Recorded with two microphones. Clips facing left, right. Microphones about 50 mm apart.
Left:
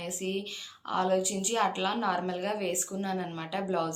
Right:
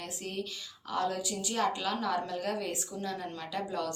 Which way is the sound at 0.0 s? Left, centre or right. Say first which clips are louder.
Left 4 dB; left.